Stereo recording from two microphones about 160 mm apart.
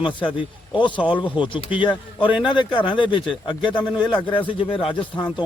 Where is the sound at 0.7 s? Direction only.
30° left (ahead or behind).